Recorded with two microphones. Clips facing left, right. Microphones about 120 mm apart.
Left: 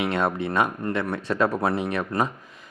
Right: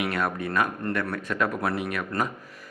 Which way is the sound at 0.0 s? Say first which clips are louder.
Left 3 dB; 25° left (ahead or behind).